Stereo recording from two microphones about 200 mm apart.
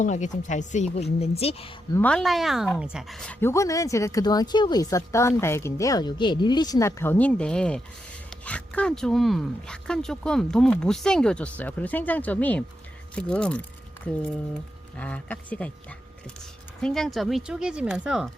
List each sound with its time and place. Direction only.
0.0 s a woman's voice: 40° left (ahead or behind)
1.9 s speech: 5° left (ahead or behind)
16.8 s speech: centre (ahead or behind)